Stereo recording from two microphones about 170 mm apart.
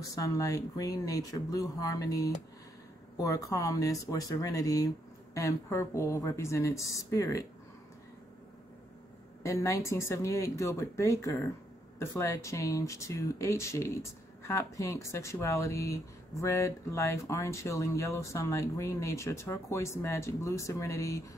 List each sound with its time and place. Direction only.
0.1 s speech: 20° left (ahead or behind)
9.4 s speech: 15° left (ahead or behind)